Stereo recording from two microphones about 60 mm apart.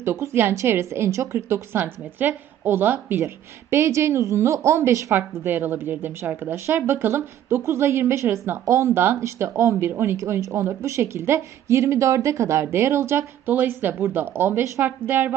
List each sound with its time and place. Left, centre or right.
0.0 s a woman's voice: right
5.1 s a woman's voice: right
8.6 s a woman's voice: right
13.5 s a woman's voice: right